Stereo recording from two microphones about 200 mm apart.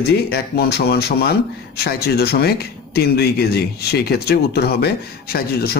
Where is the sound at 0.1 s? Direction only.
55° left (ahead or behind).